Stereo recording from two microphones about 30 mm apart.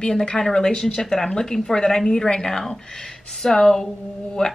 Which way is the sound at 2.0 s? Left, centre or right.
Left.